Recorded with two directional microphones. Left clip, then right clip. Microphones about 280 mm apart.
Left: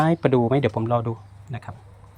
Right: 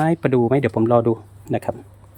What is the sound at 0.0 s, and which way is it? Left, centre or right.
Speech, centre.